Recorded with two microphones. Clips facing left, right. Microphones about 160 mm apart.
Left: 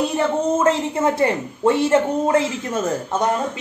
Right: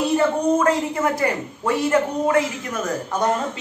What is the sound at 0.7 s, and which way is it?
A woman's voice, 25° left (ahead or behind).